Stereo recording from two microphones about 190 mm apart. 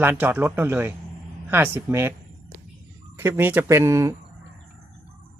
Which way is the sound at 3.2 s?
10° right (ahead or behind).